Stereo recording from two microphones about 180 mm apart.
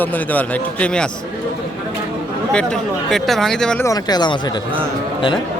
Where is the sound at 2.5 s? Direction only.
5° left (ahead or behind).